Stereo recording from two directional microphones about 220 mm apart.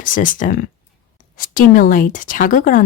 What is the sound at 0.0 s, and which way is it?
Speech, 35° left (ahead or behind).